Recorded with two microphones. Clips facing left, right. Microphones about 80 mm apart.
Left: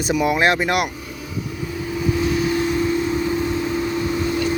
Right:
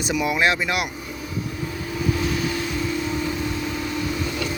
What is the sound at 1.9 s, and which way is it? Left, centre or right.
Vehicle, centre.